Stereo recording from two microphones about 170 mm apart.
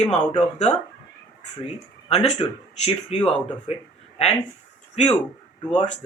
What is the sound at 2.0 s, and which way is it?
Speech, 35° left (ahead or behind).